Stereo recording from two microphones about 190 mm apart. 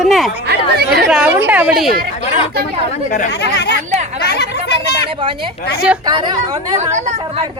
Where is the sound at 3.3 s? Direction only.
65° left (ahead or behind).